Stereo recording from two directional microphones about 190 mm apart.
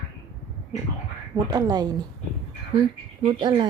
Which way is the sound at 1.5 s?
20° right (ahead or behind).